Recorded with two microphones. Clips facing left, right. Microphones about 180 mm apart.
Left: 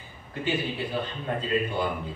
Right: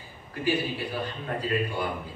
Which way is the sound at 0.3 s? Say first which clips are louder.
Right 2 dB; 25° left (ahead or behind).